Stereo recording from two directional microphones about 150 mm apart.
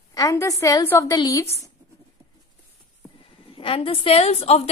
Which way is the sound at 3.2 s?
35° left (ahead or behind).